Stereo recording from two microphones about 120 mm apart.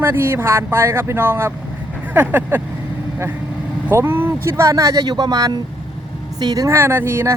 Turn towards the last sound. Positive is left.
turn(degrees=-20)  # may be behind; listen again after turning